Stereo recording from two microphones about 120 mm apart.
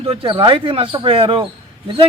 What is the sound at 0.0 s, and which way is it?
Speech, 50° right (ahead or behind).